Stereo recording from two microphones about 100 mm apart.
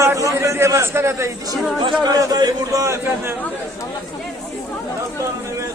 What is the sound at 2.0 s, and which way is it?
A man's voice, 40° right (ahead or behind).